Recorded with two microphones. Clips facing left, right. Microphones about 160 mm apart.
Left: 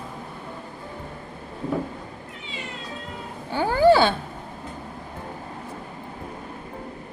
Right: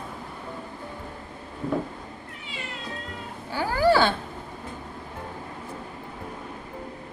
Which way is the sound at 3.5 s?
25° left (ahead or behind).